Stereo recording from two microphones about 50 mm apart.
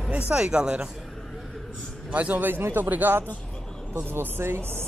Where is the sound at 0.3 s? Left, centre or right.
Centre.